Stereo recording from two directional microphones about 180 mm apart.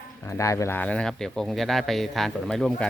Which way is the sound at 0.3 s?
15° left (ahead or behind).